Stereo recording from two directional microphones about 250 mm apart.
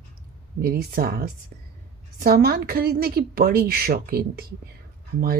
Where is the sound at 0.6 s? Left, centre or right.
Right.